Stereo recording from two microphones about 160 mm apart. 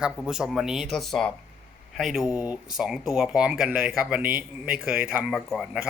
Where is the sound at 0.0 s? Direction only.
5° right (ahead or behind).